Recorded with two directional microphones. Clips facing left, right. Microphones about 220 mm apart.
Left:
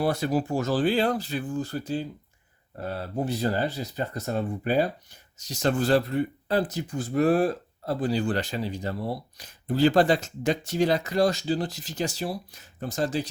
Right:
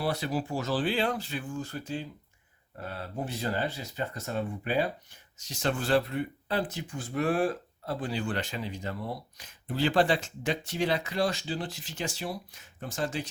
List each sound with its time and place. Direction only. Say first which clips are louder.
0.0 s speech: left 6 dB; 45° left (ahead or behind)